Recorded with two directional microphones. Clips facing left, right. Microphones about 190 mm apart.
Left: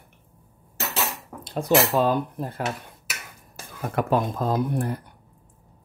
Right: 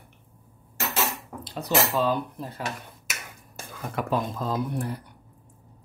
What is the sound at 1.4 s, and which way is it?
Speech, 50° left (ahead or behind).